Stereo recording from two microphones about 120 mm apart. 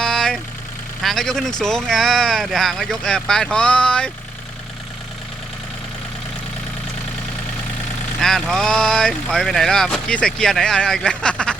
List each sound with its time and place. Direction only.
0.0 s vehicle: 5° left (ahead or behind)
1.0 s speech: 5° left (ahead or behind)
8.2 s speech: 5° left (ahead or behind)